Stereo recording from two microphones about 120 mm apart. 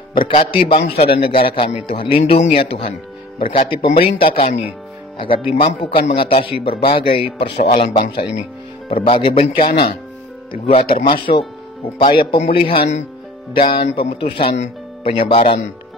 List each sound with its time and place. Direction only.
0.1 s speech: 50° left (ahead or behind)